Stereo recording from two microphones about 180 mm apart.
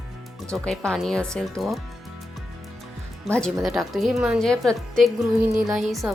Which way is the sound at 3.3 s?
Centre (ahead or behind).